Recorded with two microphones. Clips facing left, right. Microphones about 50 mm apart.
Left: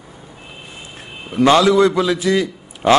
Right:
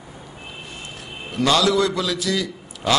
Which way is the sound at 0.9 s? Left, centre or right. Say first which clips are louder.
Left 6 dB; left.